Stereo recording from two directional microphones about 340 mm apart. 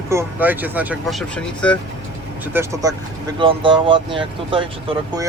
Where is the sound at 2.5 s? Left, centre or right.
Centre.